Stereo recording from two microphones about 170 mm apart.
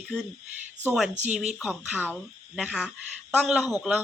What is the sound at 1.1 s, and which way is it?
Speech, 45° right (ahead or behind).